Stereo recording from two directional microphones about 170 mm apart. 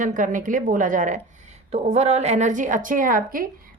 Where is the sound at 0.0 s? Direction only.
50° right (ahead or behind).